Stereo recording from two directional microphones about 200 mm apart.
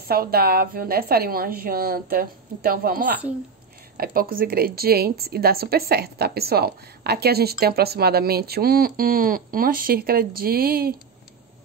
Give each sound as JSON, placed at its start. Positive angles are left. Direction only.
{"t": 0.1, "sound": "a woman's voice", "side_deg": -50}